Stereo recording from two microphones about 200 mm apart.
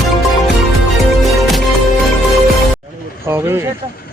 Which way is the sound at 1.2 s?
Centre (ahead or behind).